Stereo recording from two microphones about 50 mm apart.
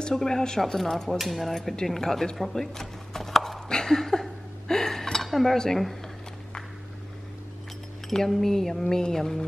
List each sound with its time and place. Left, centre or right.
0.1 s speech: centre
1.1 s a sound: centre
8.1 s speech: centre